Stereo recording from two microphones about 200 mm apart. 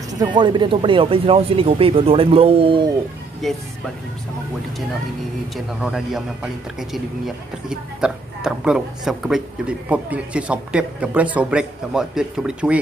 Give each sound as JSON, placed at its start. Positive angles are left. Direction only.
{"t": 0.1, "sound": "speech", "side_deg": -20}
{"t": 3.4, "sound": "speech", "side_deg": 0}
{"t": 5.8, "sound": "speech", "side_deg": -5}